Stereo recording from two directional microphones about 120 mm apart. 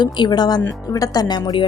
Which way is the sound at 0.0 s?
35° left (ahead or behind).